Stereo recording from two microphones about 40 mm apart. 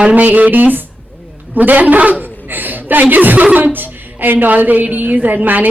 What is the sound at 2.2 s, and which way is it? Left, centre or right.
A woman's voice, right.